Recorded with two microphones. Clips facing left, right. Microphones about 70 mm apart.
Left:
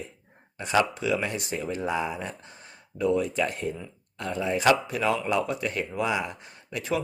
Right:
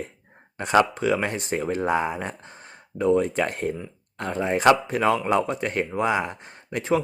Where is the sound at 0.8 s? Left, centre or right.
Right.